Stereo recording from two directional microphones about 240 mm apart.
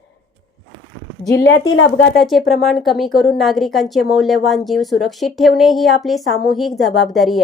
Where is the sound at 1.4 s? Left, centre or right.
Left.